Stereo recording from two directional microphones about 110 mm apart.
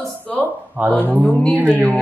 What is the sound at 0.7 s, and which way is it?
Speech, 15° right (ahead or behind).